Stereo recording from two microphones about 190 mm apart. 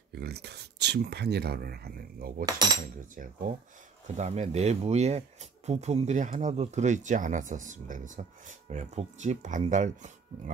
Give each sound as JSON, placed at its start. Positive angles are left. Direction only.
{"t": 0.1, "sound": "speech", "side_deg": -60}
{"t": 2.4, "sound": "speech", "side_deg": -20}
{"t": 3.2, "sound": "speech", "side_deg": -45}
{"t": 4.2, "sound": "speech", "side_deg": -35}